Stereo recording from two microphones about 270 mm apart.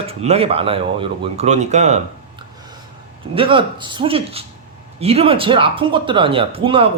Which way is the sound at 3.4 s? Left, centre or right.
Centre.